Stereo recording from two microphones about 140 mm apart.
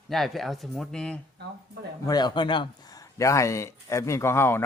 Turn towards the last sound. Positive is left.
turn(degrees=15)  # may be behind; listen again after turning